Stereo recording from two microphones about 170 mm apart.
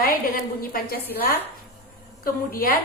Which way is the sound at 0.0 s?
60° left (ahead or behind).